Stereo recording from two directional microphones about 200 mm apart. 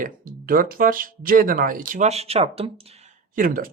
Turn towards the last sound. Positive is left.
turn(degrees=-45)  # may be behind; listen again after turning